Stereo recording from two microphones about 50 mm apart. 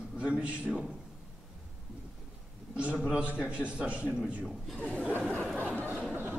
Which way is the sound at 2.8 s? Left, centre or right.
Right.